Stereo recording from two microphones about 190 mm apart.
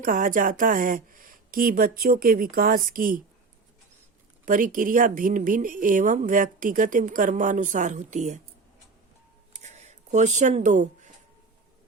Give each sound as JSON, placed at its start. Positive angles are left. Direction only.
{"t": 0.0, "sound": "a woman's voice", "side_deg": -45}
{"t": 4.4, "sound": "a woman's voice", "side_deg": -45}
{"t": 9.6, "sound": "a sound", "side_deg": -35}